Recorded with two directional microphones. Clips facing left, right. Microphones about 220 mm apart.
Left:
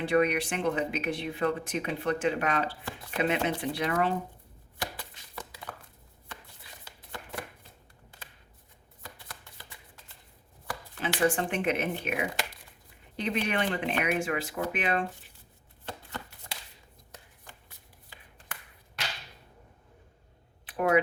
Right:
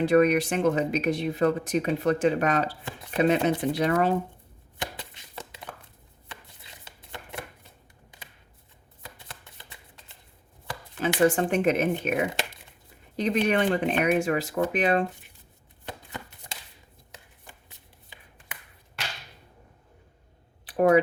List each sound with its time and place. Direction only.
0.0 s speech: 40° right (ahead or behind)
4.8 s a sound: 25° right (ahead or behind)
6.8 s chopping: 25° right (ahead or behind)
9.1 s shuffling cards: 20° right (ahead or behind)
11.0 s speech: 40° right (ahead or behind)
15.9 s chopping: 15° right (ahead or behind)
17.4 s shuffling cards: 20° right (ahead or behind)
20.7 s a sound: 35° right (ahead or behind)